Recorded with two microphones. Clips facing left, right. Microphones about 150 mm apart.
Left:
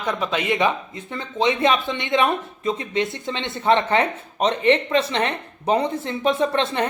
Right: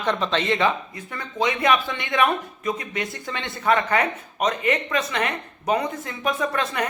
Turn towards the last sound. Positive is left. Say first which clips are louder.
# left 4 dB
turn(degrees=30)  # may be behind; listen again after turning